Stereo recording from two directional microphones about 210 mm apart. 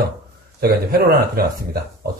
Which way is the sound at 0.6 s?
45° right (ahead or behind).